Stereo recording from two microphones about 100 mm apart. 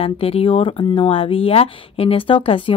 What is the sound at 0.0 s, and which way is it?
Speech, 75° left (ahead or behind).